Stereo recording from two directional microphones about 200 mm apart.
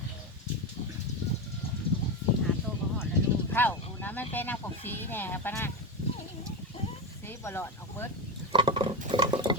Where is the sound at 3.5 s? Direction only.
10° left (ahead or behind).